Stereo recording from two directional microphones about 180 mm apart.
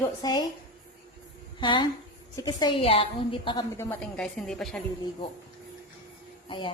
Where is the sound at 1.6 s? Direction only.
25° left (ahead or behind).